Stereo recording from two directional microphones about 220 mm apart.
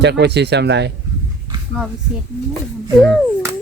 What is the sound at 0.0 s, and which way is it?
Speech, 50° right (ahead or behind).